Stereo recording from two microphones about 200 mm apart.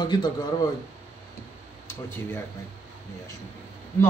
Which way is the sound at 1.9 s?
10° left (ahead or behind).